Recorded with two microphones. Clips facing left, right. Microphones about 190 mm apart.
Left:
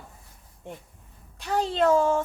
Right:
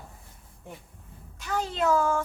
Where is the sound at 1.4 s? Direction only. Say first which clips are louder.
Left 4 dB; 30° left (ahead or behind).